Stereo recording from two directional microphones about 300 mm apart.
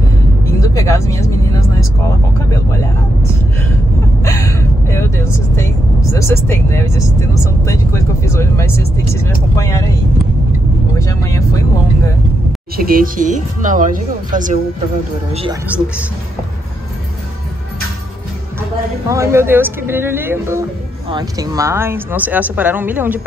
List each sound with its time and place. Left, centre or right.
0.5 s vehicle: centre
2.5 s speech: centre
4.2 s speech: centre
11.0 s speech: centre
12.7 s speech: right
19.0 s speech: centre